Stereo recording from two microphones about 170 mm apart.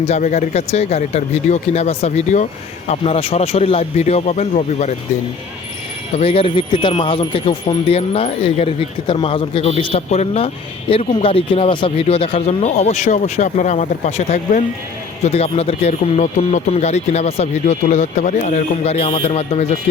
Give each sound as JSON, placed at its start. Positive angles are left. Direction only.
{"t": 0.0, "sound": "speech", "side_deg": 45}
{"t": 6.1, "sound": "speech", "side_deg": 35}